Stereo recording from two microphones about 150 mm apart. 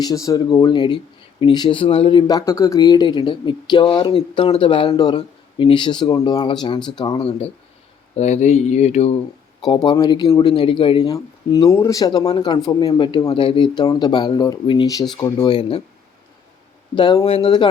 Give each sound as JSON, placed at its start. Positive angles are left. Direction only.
{"t": 0.0, "sound": "speech", "side_deg": 25}
{"t": 2.2, "sound": "speech", "side_deg": 20}
{"t": 9.6, "sound": "speech", "side_deg": 30}
{"t": 11.1, "sound": "speech", "side_deg": 25}
{"t": 16.9, "sound": "speech", "side_deg": 30}